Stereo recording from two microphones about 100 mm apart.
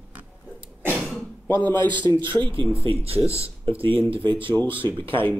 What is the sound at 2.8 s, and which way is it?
Speech, 80° right.